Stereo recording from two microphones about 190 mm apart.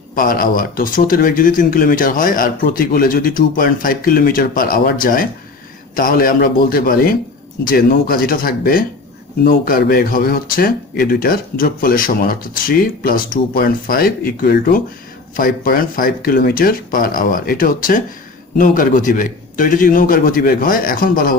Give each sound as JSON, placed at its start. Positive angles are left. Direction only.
{"t": 0.2, "sound": "speech", "side_deg": 50}